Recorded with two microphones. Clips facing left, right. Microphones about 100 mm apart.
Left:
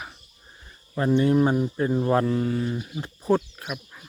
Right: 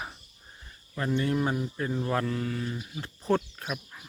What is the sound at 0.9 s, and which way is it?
Speech, 25° left (ahead or behind).